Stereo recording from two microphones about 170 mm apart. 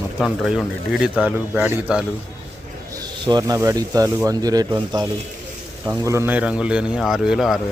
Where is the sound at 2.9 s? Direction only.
25° right (ahead or behind); by 7.5 s 5° right (ahead or behind).